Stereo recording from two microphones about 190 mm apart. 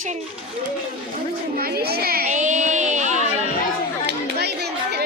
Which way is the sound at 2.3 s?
40° right (ahead or behind).